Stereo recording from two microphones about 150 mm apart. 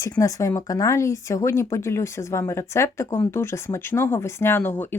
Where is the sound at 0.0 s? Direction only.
20° left (ahead or behind).